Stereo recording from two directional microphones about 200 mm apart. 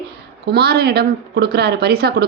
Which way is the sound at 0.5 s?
55° right (ahead or behind).